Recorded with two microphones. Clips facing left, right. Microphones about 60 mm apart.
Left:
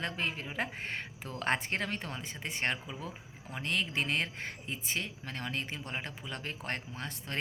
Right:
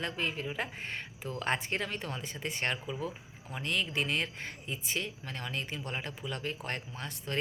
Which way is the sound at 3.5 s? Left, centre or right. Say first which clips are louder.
Even; left.